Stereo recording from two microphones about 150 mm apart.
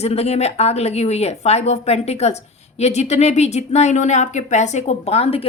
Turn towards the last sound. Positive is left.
turn(degrees=40)  # may be behind; listen again after turning